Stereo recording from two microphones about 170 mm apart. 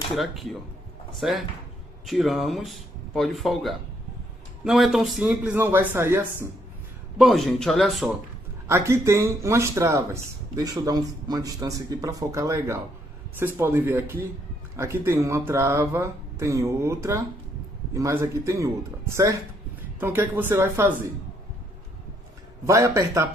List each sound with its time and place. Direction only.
0.1 s speech: centre (ahead or behind)
7.2 s speech: centre (ahead or behind)
8.6 s speech: 15° right (ahead or behind)
22.7 s speech: 15° right (ahead or behind)